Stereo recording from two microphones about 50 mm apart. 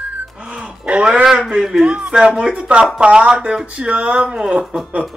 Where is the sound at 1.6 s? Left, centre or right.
Centre.